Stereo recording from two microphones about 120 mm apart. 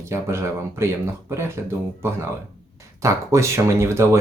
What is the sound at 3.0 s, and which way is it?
Speech, 25° right (ahead or behind).